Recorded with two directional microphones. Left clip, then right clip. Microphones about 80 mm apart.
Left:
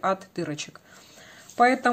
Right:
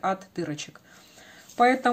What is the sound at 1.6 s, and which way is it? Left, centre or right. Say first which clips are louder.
Speech: left 1 dB; left.